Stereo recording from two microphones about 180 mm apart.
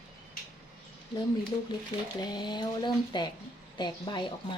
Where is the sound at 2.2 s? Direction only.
25° left (ahead or behind).